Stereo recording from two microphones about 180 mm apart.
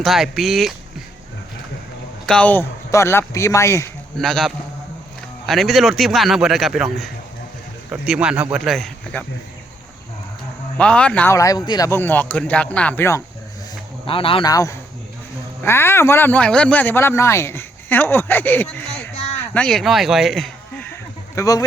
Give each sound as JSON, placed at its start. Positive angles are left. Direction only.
{"t": 0.0, "sound": "a man's voice", "side_deg": 0}
{"t": 2.2, "sound": "speech", "side_deg": 5}
{"t": 4.2, "sound": "a man's voice", "side_deg": 0}
{"t": 10.8, "sound": "speech", "side_deg": 5}
{"t": 14.1, "sound": "speech", "side_deg": 30}
{"t": 20.9, "sound": "a sound", "side_deg": 20}